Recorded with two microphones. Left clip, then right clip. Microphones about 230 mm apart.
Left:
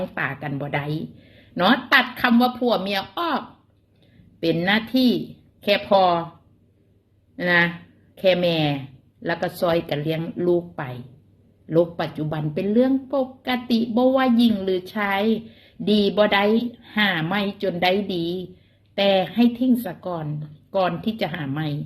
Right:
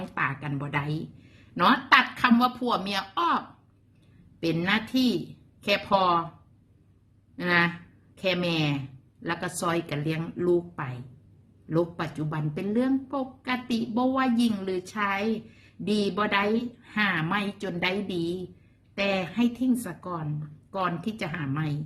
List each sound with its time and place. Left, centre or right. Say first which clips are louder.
0.1 s a woman's voice: left 2 dB; centre
7.3 s a woman's voice: left 5 dB; centre
11.7 s a woman's voice: left 7 dB; centre